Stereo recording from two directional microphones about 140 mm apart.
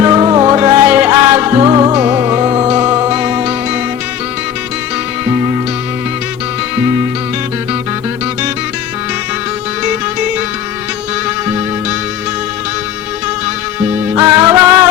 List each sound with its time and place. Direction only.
0.0 s music: 25° right (ahead or behind)
0.5 s music: 15° right (ahead or behind)
1.6 s music: 30° right (ahead or behind); by 3.5 s 10° right (ahead or behind)
14.3 s music: 25° right (ahead or behind)